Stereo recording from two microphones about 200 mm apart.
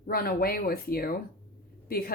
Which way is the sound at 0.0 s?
50° left (ahead or behind).